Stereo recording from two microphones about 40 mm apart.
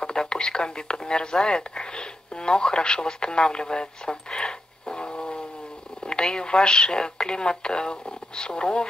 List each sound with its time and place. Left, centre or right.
0.0 s speech: left